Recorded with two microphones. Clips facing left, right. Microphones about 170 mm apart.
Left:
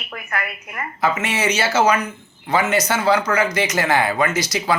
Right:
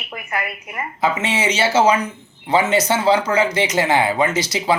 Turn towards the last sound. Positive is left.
turn(degrees=-25)  # may be behind; listen again after turning